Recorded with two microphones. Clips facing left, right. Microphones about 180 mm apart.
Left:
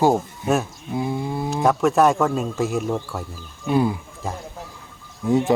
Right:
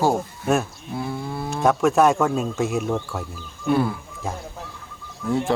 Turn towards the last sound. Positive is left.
turn(degrees=20)  # may be behind; listen again after turning